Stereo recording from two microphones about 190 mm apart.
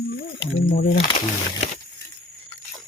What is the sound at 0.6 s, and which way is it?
Speech, 50° left (ahead or behind).